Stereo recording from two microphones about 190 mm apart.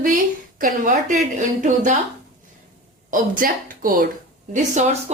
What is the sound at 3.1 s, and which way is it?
Speech, 45° right (ahead or behind).